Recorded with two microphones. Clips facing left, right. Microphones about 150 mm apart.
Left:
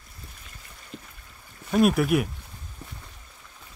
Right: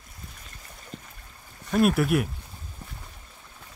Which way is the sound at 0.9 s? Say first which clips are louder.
Left 1 dB; 40° right (ahead or behind).